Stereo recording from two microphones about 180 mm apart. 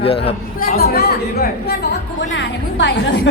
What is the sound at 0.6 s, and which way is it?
A woman's voice, 55° left (ahead or behind).